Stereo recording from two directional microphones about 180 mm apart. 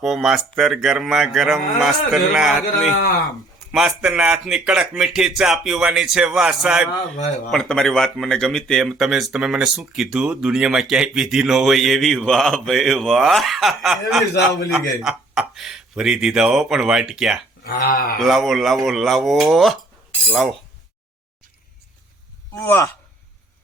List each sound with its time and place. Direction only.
0.0 s speech: centre (ahead or behind)
17.7 s speech: 55° left (ahead or behind)
18.2 s speech: centre (ahead or behind)
22.6 s speech: 15° left (ahead or behind)